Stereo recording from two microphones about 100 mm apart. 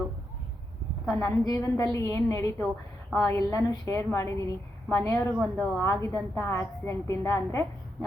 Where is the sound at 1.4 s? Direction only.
35° left (ahead or behind).